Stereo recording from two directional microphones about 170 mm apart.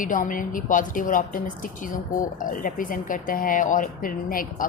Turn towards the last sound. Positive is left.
turn(degrees=55)  # may be behind; listen again after turning